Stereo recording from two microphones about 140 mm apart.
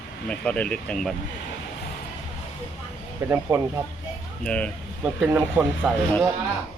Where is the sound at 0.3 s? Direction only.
5° left (ahead or behind).